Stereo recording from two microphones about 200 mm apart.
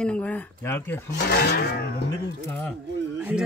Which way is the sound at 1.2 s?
55° left (ahead or behind).